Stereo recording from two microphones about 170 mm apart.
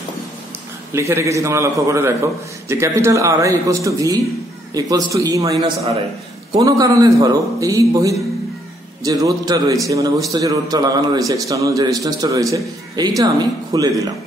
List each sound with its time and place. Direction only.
0.9 s a man's voice: 15° right (ahead or behind)